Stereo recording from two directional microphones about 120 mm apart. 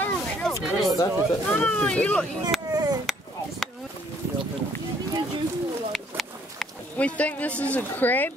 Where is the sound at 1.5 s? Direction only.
10° left (ahead or behind).